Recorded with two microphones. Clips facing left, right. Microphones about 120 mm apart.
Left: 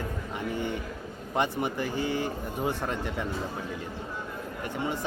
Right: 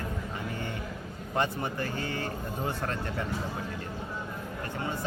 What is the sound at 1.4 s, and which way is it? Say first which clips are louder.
Speech: left 2 dB; 15° left (ahead or behind).